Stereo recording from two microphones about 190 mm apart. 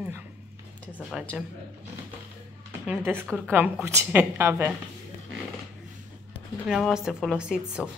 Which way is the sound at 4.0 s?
10° right (ahead or behind).